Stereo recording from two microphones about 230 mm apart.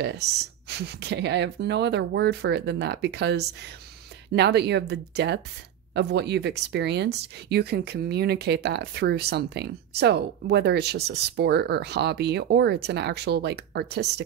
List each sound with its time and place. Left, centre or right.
0.7 s speech: right